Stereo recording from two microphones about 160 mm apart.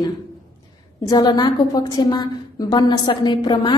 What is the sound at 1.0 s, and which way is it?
A woman's voice, 25° left (ahead or behind).